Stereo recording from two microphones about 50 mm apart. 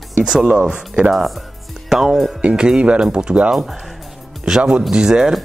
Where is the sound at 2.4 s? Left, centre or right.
Centre.